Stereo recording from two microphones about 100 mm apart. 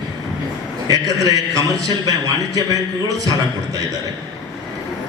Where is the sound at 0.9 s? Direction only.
35° right (ahead or behind).